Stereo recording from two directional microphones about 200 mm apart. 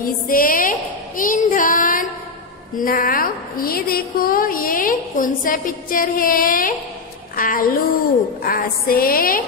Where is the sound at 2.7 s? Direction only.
45° left (ahead or behind).